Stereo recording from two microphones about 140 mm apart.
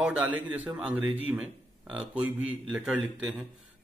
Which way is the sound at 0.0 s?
10° right (ahead or behind).